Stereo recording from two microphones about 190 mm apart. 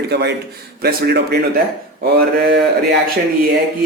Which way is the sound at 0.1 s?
60° right (ahead or behind).